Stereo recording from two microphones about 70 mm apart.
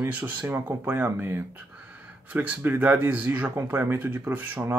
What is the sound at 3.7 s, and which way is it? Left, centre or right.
Speech, right.